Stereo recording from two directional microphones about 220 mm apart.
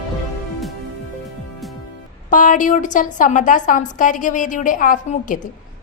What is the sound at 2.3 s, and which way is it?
A woman's voice, 35° left (ahead or behind).